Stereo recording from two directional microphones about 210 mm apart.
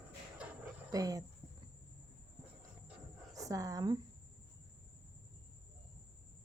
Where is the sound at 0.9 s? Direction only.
15° right (ahead or behind).